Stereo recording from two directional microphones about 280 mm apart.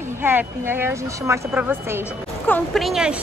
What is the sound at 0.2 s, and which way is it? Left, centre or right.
A woman's voice, centre.